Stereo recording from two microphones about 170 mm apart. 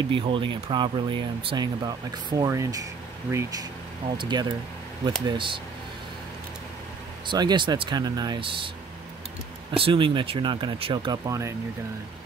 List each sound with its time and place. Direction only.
0.1 s speech: 30° right (ahead or behind)
7.2 s speech: 25° right (ahead or behind)
9.7 s speech: 30° right (ahead or behind)